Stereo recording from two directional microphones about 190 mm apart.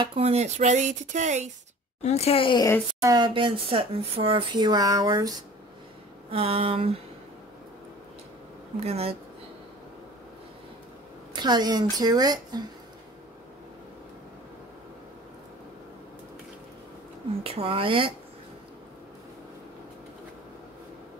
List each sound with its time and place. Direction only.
0.0 s speech: 30° right (ahead or behind)
2.0 s speech: 35° left (ahead or behind)
3.0 s speech: 20° right (ahead or behind)
8.7 s speech: 35° right (ahead or behind)
11.3 s speech: 20° right (ahead or behind)
17.4 s speech: 30° right (ahead or behind)